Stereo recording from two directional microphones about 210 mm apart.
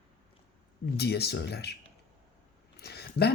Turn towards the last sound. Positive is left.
turn(degrees=50)  # may be behind; listen again after turning